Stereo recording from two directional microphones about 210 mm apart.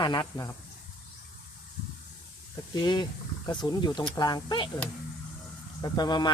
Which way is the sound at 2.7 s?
20° left (ahead or behind).